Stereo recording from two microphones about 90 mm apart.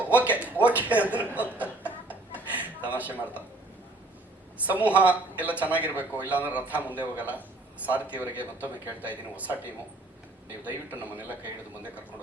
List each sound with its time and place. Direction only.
0.0 s speech: 15° right (ahead or behind)
2.5 s a sound: 15° right (ahead or behind)
4.6 s a man's voice: 15° right (ahead or behind)